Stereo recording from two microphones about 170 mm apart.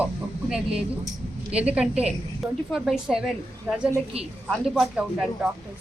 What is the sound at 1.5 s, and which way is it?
Speech, 35° right (ahead or behind).